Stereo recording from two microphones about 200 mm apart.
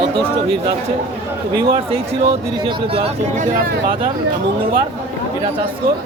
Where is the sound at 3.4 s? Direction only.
45° right (ahead or behind).